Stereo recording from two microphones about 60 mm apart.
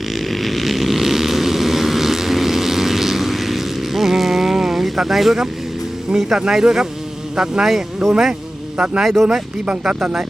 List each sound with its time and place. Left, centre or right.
0.3 s vehicle: centre
6.1 s speech: centre
9.0 s speech: centre
9.2 s speech: centre